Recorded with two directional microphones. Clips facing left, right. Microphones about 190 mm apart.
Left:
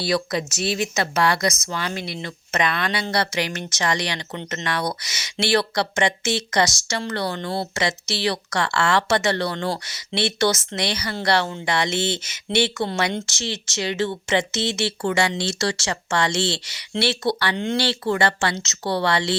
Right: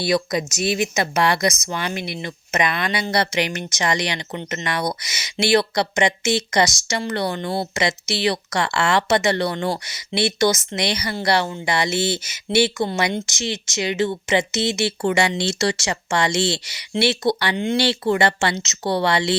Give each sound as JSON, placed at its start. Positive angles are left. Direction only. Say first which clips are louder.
{"t": 0.0, "sound": "speech", "louder": "right 2 dB", "side_deg": -15}